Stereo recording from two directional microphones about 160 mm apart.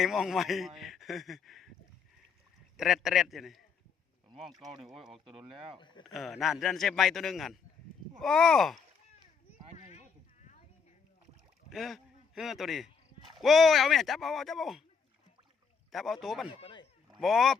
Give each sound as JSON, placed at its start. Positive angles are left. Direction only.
{"t": 0.0, "sound": "a man's voice", "side_deg": 0}
{"t": 2.7, "sound": "a man's voice", "side_deg": 0}
{"t": 5.3, "sound": "speech", "side_deg": -35}
{"t": 6.1, "sound": "a man's voice", "side_deg": 0}
{"t": 11.7, "sound": "a man's voice", "side_deg": 0}
{"t": 15.9, "sound": "a man's voice", "side_deg": 0}
{"t": 16.6, "sound": "a sound", "side_deg": 35}
{"t": 17.2, "sound": "a man's voice", "side_deg": 0}